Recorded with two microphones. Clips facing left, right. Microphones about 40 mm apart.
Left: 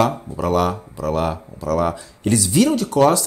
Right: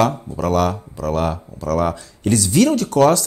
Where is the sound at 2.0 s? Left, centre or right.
Left.